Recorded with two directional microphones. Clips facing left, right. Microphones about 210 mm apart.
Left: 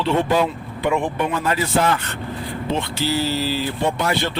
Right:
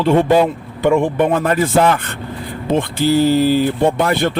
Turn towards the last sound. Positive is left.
turn(degrees=-55)  # may be behind; listen again after turning